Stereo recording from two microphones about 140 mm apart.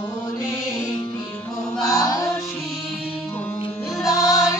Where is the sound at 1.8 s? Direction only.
25° left (ahead or behind).